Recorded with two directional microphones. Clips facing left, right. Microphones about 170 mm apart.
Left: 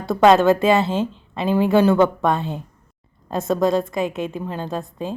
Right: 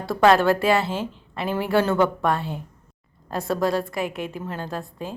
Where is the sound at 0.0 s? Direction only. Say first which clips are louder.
Left 3 dB; 20° left (ahead or behind).